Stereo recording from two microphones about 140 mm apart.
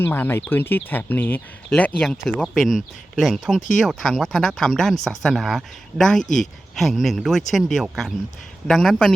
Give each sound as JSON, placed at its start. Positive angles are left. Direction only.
{"t": 0.0, "sound": "speech", "side_deg": 15}